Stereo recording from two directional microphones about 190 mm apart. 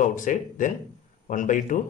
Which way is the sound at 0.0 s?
45° left (ahead or behind).